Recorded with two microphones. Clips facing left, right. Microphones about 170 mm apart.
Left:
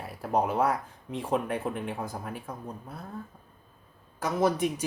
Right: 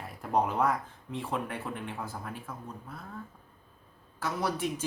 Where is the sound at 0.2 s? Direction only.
10° left (ahead or behind).